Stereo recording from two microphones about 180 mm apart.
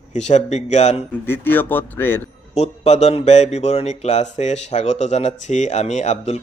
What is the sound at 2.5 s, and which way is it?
Speech, 35° left (ahead or behind).